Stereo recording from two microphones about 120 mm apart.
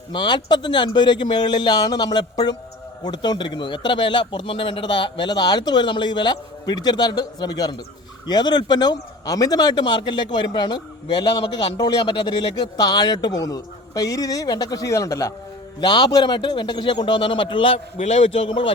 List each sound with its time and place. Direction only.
0.1 s a man's voice: 40° left (ahead or behind)
15.8 s a man's voice: 40° left (ahead or behind)
17.9 s a man's voice: 65° left (ahead or behind); by 18.7 s 50° left (ahead or behind)